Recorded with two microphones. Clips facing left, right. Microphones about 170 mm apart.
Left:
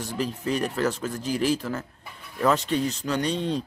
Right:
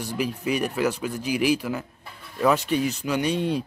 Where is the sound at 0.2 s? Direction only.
15° right (ahead or behind).